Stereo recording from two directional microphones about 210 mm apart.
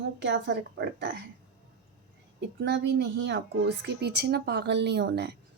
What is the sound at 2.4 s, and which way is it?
Speech, 50° right (ahead or behind).